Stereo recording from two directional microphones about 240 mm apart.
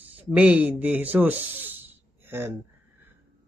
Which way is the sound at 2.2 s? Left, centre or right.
Centre.